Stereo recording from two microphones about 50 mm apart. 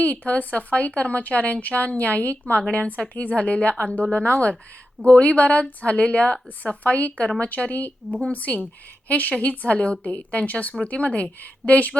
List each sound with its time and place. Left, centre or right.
0.0 s a woman's voice: left